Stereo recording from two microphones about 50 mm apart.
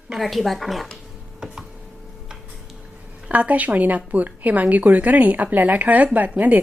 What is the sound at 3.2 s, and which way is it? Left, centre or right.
Speech, right.